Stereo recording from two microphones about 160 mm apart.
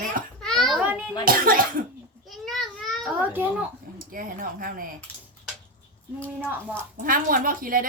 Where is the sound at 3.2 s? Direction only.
10° right (ahead or behind).